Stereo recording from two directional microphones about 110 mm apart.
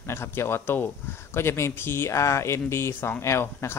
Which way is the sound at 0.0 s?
25° left (ahead or behind).